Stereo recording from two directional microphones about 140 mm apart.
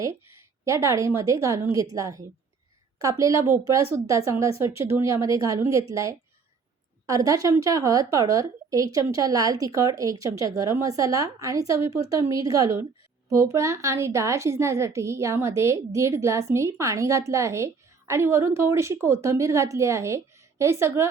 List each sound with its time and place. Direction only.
0.6 s a woman's voice: 20° right (ahead or behind)